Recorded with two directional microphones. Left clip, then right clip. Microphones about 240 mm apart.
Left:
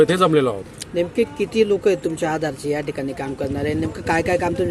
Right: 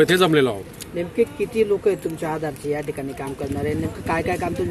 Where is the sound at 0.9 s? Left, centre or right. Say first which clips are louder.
Left 2 dB; left.